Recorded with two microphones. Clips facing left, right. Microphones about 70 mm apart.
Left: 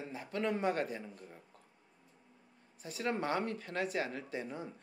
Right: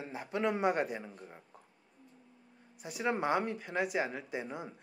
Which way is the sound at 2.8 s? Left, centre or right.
Centre.